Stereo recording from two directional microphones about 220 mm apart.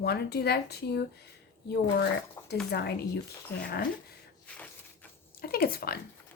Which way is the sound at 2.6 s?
45° left (ahead or behind).